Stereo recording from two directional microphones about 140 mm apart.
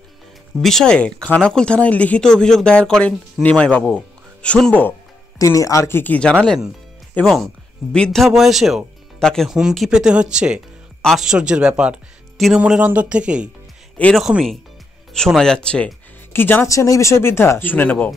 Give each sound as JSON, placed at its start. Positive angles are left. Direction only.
{"t": 0.6, "sound": "speech", "side_deg": 5}
{"t": 5.4, "sound": "speech", "side_deg": 25}
{"t": 13.9, "sound": "speech", "side_deg": 10}
{"t": 14.2, "sound": "speech", "side_deg": 0}